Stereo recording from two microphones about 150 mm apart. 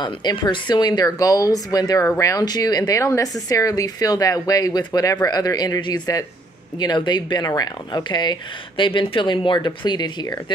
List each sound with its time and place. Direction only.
0.0 s speech: 30° left (ahead or behind)